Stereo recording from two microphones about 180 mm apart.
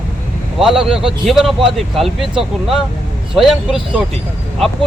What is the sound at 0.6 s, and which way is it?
Speech, centre (ahead or behind).